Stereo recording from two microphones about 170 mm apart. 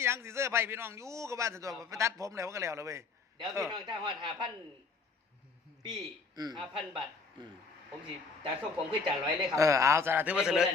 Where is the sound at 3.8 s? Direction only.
30° right (ahead or behind).